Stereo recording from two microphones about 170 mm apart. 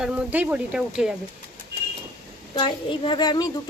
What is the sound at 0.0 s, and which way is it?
Speech, 5° right (ahead or behind).